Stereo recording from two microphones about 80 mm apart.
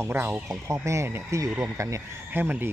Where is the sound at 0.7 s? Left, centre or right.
Right.